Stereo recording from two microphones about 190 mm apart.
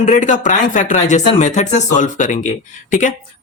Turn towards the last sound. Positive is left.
turn(degrees=40)  # may be behind; listen again after turning